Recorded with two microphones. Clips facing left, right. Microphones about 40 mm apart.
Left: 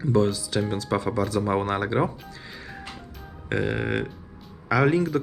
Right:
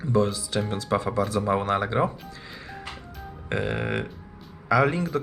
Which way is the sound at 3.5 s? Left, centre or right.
Centre.